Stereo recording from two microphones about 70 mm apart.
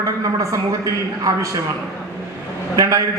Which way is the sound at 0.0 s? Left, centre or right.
Right.